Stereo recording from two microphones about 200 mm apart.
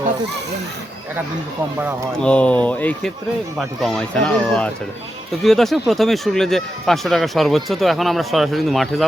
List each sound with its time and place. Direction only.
2.1 s speech: 5° left (ahead or behind)